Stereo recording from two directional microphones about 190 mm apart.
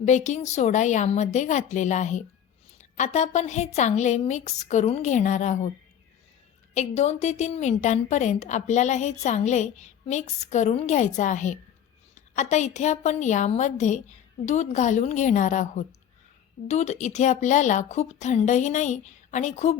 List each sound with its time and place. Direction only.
0.0 s a woman's voice: 40° left (ahead or behind)
6.7 s a woman's voice: 35° left (ahead or behind)